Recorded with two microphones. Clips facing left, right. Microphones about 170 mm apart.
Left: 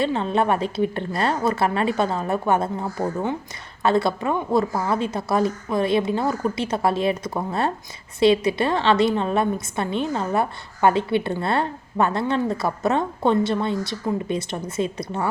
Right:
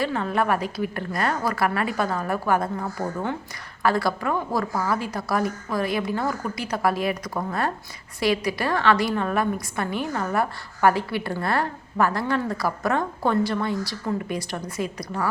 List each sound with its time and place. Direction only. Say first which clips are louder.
0.0 s a woman's voice: left 3 dB; 25° left (ahead or behind)